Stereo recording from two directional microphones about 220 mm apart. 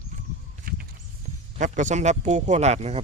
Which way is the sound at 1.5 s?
35° right (ahead or behind).